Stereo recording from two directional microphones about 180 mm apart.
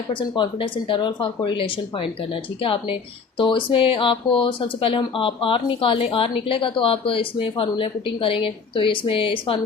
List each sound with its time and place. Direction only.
0.1 s speech: 25° left (ahead or behind)